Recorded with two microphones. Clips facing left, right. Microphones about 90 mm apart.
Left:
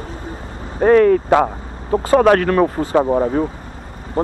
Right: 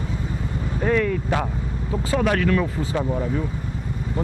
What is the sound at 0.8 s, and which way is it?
Speech, 50° left (ahead or behind).